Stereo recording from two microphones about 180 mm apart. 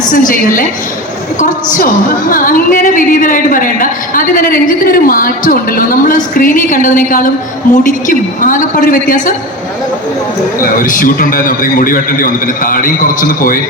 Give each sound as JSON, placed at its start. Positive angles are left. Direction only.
{"t": 0.1, "sound": "a man's voice", "side_deg": 50}
{"t": 10.6, "sound": "a man's voice", "side_deg": 50}